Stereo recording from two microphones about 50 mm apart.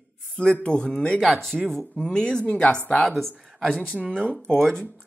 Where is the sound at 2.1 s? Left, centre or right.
Centre.